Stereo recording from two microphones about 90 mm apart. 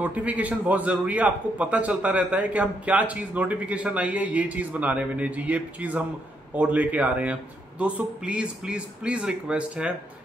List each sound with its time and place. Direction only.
0.0 s a man's voice: 15° right (ahead or behind)